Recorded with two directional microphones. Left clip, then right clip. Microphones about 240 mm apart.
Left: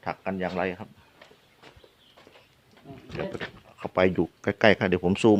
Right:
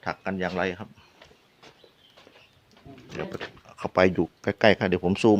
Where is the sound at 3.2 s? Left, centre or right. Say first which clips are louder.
Left 1 dB; centre.